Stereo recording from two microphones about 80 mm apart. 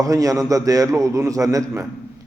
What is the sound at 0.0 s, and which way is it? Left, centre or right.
A man's voice, right.